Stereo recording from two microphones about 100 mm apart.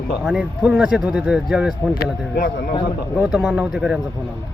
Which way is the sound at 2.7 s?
55° left (ahead or behind).